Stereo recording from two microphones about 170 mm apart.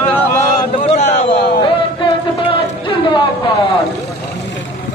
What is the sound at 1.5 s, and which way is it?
Music, 30° left (ahead or behind).